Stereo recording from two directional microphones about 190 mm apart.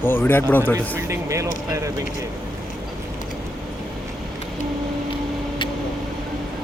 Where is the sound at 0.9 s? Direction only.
15° right (ahead or behind).